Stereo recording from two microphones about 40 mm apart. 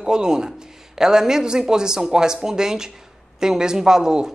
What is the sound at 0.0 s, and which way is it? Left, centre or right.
Speech, centre.